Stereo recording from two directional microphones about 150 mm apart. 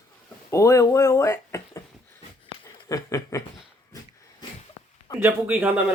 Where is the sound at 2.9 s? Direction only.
20° left (ahead or behind).